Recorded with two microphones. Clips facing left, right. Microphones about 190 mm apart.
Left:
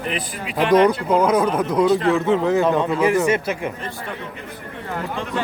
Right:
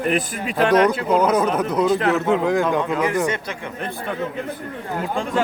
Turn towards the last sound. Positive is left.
turn(degrees=-45)  # may be behind; listen again after turning